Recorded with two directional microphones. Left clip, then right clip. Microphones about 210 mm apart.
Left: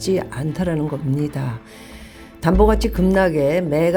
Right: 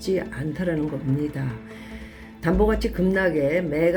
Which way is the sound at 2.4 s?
45° left (ahead or behind).